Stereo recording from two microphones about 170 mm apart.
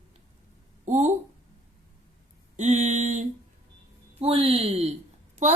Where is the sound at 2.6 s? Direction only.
45° right (ahead or behind).